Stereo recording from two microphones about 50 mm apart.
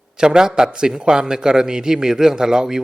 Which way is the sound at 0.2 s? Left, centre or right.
Centre.